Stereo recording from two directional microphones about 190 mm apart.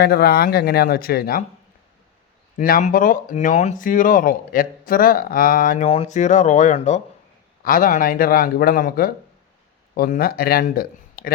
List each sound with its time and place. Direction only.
0.0 s speech: 55° left (ahead or behind)
2.6 s speech: 45° left (ahead or behind)